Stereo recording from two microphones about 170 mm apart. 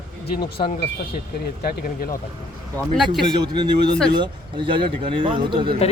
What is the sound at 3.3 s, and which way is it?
Speech, 25° right (ahead or behind).